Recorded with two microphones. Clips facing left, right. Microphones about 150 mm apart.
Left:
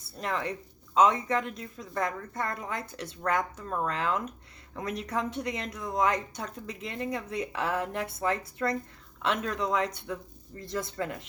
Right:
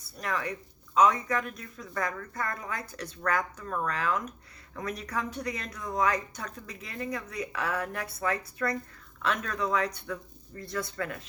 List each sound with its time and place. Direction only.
0.0 s speech: 25° left (ahead or behind)